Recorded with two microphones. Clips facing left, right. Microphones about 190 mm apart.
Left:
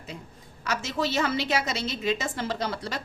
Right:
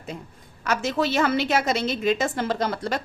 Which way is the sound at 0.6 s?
55° right (ahead or behind).